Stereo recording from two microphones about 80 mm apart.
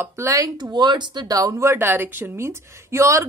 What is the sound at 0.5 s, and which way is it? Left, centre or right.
Speech, right.